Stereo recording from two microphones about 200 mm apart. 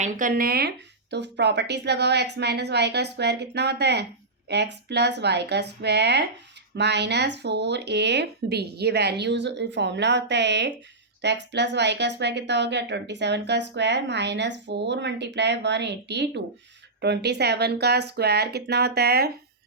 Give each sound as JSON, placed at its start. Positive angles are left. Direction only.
{"t": 0.0, "sound": "a woman's voice", "side_deg": -45}